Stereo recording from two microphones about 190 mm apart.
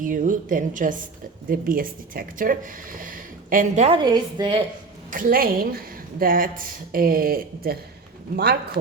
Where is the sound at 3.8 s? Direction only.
25° right (ahead or behind).